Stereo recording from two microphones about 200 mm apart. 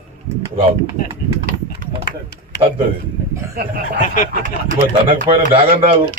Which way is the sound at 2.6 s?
30° right (ahead or behind).